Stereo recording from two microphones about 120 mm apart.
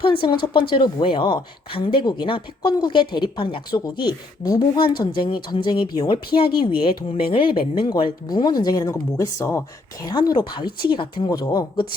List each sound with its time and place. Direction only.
0.0 s a woman's voice: 45° left (ahead or behind); by 9.6 s 25° left (ahead or behind)
10.1 s a woman's voice: 35° left (ahead or behind)